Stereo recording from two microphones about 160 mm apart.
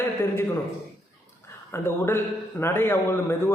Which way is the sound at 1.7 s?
15° left (ahead or behind).